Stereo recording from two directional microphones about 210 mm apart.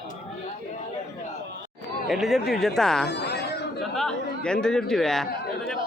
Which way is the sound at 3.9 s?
5° left (ahead or behind).